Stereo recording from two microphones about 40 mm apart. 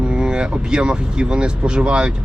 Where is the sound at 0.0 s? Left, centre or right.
Right.